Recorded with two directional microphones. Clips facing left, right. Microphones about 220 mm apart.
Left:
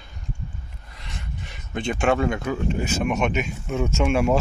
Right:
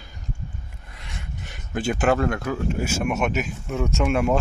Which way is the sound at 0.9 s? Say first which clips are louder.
Left 1 dB; centre (ahead or behind).